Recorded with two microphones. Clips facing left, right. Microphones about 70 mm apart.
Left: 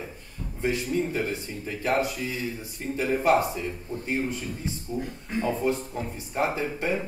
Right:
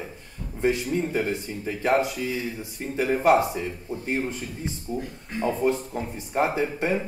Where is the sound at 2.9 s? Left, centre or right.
Right.